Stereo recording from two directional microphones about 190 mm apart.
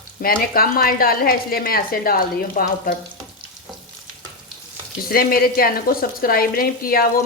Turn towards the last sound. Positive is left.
turn(degrees=50)  # may be behind; listen again after turning